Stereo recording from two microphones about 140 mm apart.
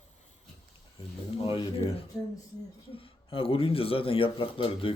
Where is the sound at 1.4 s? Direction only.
35° left (ahead or behind).